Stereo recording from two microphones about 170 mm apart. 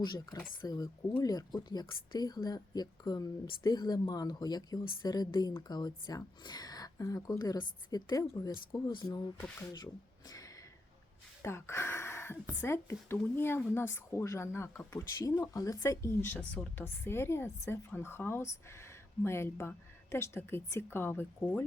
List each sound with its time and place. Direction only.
0.0 s speech: 25° left (ahead or behind)
11.4 s speech: 15° left (ahead or behind)